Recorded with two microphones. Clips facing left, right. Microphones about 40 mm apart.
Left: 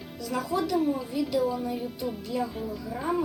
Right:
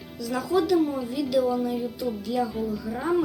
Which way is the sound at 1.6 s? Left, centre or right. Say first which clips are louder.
Right 4 dB; right.